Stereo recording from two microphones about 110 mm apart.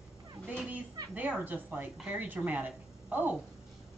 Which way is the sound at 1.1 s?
15° right (ahead or behind).